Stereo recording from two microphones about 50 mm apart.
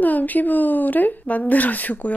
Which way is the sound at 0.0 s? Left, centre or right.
Left.